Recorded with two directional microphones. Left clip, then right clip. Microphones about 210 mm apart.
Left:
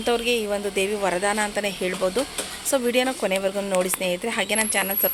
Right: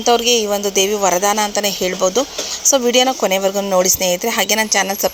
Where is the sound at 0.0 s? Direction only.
25° right (ahead or behind).